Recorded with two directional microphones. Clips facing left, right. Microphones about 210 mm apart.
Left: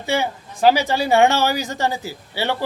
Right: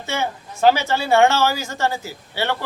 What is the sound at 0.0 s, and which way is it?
Speech, 15° left (ahead or behind).